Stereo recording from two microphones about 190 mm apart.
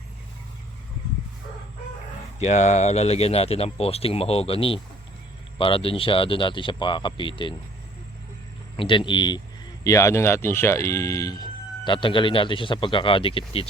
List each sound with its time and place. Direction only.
2.4 s speech: 35° left (ahead or behind)
8.7 s speech: 25° left (ahead or behind)